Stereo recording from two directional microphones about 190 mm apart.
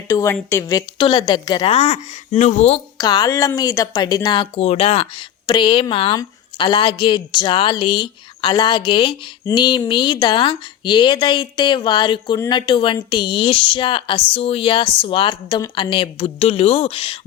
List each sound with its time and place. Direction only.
0.1 s a woman's voice: 15° left (ahead or behind); by 2.8 s 35° left (ahead or behind)
3.0 s speech: 20° left (ahead or behind)